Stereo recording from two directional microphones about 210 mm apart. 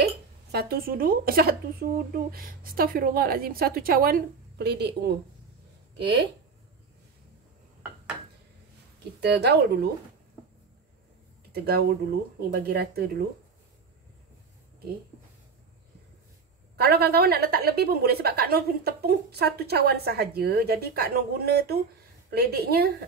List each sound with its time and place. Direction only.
0.0 s speech: 50° right (ahead or behind)
9.2 s speech: 50° right (ahead or behind)
11.5 s speech: 45° right (ahead or behind)
16.7 s speech: 50° right (ahead or behind)